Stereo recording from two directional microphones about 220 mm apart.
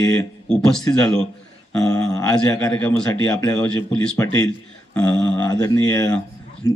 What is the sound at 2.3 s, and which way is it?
A man's voice, 5° left (ahead or behind).